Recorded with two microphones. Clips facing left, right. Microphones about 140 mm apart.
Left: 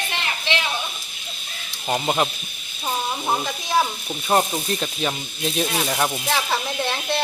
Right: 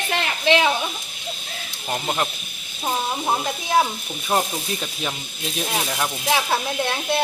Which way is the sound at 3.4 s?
10° right (ahead or behind).